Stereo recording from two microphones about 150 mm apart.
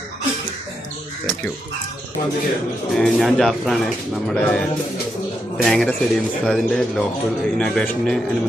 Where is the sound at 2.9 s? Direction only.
Centre (ahead or behind).